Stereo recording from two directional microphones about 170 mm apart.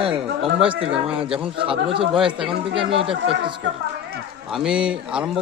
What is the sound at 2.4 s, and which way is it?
A man's voice, 30° right (ahead or behind).